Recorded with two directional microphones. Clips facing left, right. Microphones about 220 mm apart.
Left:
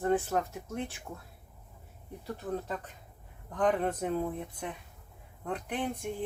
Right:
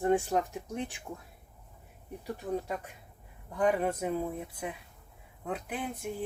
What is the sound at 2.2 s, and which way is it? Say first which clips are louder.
Speech: right 1 dB; 15° right (ahead or behind).